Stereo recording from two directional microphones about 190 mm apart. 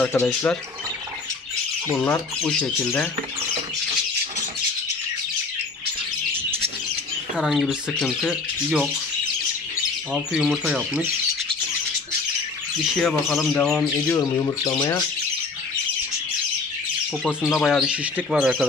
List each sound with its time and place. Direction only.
0.0 s speech: 10° left (ahead or behind)
1.9 s speech: 10° left (ahead or behind)
7.3 s speech: centre (ahead or behind)
10.1 s speech: 5° right (ahead or behind)
12.9 s speech: centre (ahead or behind); by 15.0 s 20° left (ahead or behind)
17.4 s speech: centre (ahead or behind)